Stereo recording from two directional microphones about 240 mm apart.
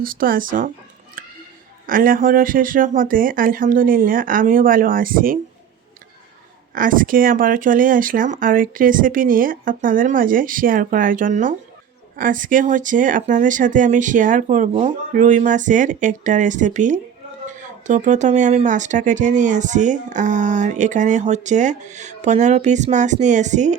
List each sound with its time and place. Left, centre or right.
0.0 s speech: right
1.2 s a sound: right
1.9 s speech: right
6.7 s speech: right